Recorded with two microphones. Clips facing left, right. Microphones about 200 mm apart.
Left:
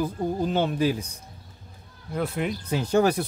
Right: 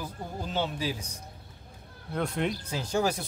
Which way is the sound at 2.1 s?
5° left (ahead or behind).